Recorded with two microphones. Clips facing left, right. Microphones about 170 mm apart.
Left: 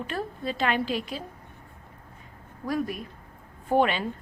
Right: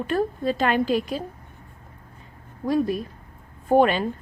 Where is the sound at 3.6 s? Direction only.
45° right (ahead or behind).